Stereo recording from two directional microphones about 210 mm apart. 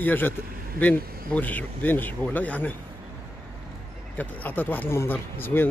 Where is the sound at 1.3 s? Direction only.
10° left (ahead or behind).